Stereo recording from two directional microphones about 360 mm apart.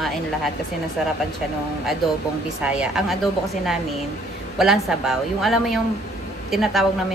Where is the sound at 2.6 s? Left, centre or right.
Centre.